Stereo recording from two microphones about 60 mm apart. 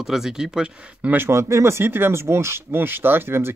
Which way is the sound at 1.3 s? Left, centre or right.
Right.